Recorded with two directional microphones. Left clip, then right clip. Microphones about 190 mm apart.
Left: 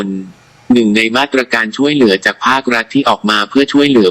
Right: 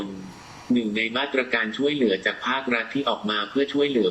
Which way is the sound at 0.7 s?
45° left (ahead or behind).